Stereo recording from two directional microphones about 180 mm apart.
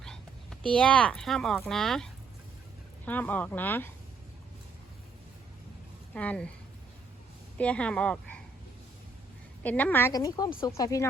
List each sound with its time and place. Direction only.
0.0 s a sound: 5° left (ahead or behind)
0.7 s speech: 5° left (ahead or behind)
3.1 s a woman's voice: 10° left (ahead or behind)
6.1 s a woman's voice: 5° left (ahead or behind)
7.6 s a woman's voice: 5° left (ahead or behind)
9.6 s a woman's voice: 10° left (ahead or behind)